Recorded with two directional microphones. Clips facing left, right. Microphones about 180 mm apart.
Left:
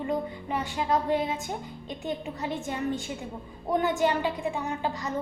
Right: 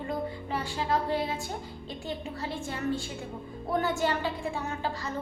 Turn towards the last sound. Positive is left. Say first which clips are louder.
# left 3 dB
turn(degrees=15)  # may be behind; listen again after turning